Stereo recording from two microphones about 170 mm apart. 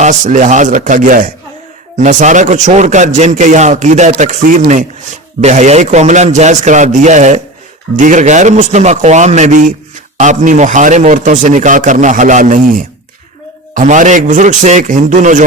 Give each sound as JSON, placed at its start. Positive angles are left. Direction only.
{"t": 0.0, "sound": "a man's voice", "side_deg": -50}
{"t": 13.7, "sound": "a man's voice", "side_deg": -45}